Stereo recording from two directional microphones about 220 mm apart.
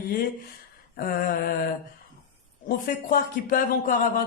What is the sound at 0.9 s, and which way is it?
Speech, 40° left (ahead or behind).